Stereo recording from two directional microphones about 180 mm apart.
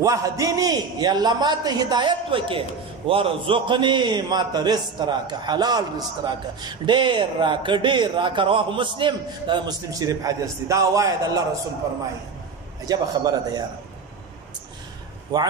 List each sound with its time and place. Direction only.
0.0 s a man's voice: 20° right (ahead or behind)
12.8 s a man's voice: 20° right (ahead or behind)
15.3 s a man's voice: 20° right (ahead or behind)